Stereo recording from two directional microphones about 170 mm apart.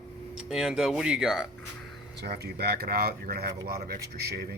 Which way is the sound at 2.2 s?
75° right (ahead or behind).